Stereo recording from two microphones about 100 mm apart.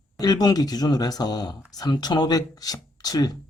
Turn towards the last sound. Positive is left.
turn(degrees=40)  # may be behind; listen again after turning